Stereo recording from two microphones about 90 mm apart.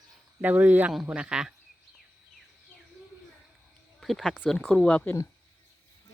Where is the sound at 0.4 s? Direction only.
20° right (ahead or behind).